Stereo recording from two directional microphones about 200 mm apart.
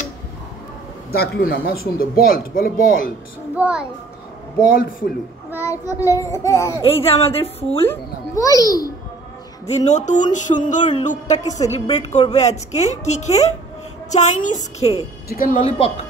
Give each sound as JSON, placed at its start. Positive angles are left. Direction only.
{"t": 1.1, "sound": "speech", "side_deg": 50}
{"t": 3.5, "sound": "a child's voice", "side_deg": -5}
{"t": 4.6, "sound": "speech", "side_deg": 45}
{"t": 5.7, "sound": "child singing", "side_deg": 15}
{"t": 6.8, "sound": "a woman's voice", "side_deg": 30}
{"t": 7.8, "sound": "child singing", "side_deg": 15}
{"t": 9.7, "sound": "music", "side_deg": 35}